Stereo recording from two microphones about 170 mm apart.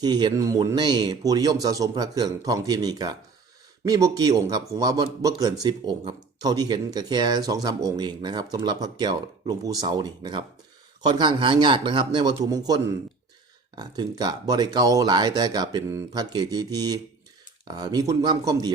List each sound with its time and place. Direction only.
0.0 s speech: 25° right (ahead or behind)